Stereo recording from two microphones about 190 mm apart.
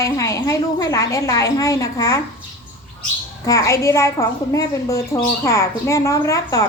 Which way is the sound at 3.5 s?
15° left (ahead or behind).